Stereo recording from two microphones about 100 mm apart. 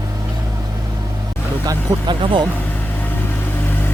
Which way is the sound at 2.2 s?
55° right (ahead or behind).